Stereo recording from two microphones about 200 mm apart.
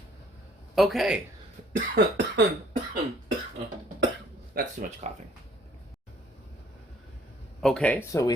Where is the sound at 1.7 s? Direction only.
50° right (ahead or behind).